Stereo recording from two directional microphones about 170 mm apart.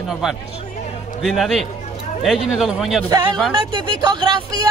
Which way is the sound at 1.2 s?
Centre (ahead or behind).